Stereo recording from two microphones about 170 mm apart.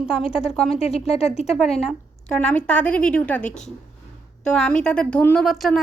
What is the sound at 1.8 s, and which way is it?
Speech, centre (ahead or behind).